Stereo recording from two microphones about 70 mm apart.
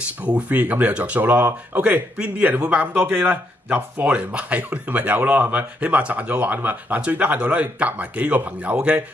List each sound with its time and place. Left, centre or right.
0.2 s speech: right